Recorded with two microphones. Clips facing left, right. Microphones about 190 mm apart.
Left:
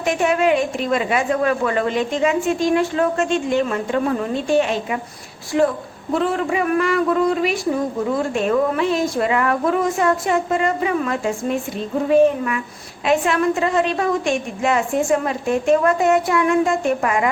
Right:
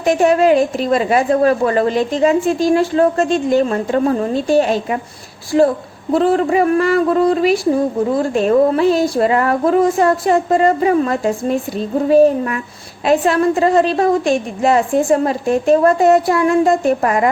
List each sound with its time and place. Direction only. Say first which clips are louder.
0.0 s a woman's voice: right 5 dB; 35° right (ahead or behind)